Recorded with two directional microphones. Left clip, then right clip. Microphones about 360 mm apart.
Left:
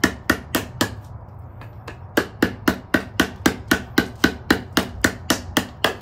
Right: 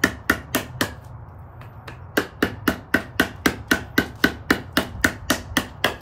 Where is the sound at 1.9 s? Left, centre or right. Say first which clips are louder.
Left 2 dB; centre.